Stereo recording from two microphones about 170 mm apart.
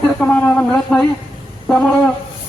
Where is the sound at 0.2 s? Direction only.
5° left (ahead or behind).